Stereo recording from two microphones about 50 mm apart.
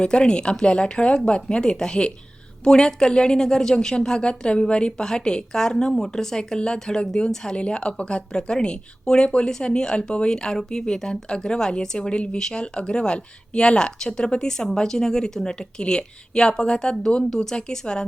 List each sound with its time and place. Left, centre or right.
0.0 s speech: centre